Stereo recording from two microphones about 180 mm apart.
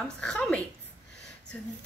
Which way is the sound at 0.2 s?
5° left (ahead or behind).